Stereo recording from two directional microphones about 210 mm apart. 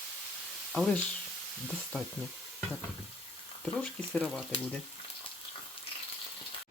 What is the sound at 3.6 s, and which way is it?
Speech, 5° left (ahead or behind).